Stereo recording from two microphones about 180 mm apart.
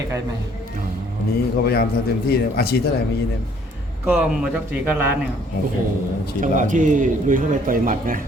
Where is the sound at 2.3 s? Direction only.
60° left (ahead or behind).